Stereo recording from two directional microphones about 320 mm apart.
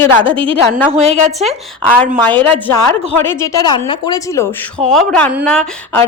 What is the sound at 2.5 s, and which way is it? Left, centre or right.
Speech, centre.